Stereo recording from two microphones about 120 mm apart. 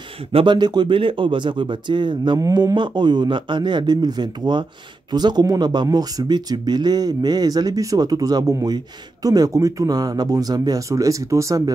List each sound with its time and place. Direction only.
0.3 s speech: 45° right (ahead or behind); by 11.7 s 25° right (ahead or behind)